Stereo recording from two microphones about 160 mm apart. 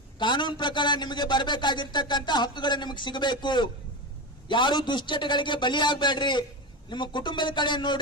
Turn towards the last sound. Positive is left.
turn(degrees=30)  # may be behind; listen again after turning